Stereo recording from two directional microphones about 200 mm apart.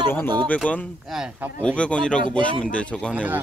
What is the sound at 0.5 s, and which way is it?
Speech, 5° left (ahead or behind).